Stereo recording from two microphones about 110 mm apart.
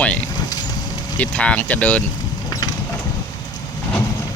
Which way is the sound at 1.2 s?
10° left (ahead or behind).